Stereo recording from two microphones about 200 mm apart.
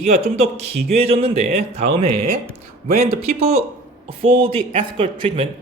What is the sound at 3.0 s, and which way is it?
Speech, 30° right (ahead or behind).